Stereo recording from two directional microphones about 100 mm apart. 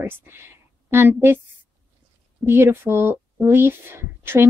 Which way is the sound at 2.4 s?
25° right (ahead or behind).